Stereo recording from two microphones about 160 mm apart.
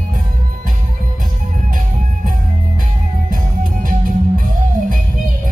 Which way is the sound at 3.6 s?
55° right (ahead or behind).